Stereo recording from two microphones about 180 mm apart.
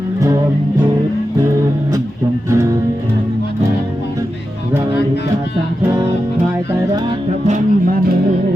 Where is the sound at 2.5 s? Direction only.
15° right (ahead or behind).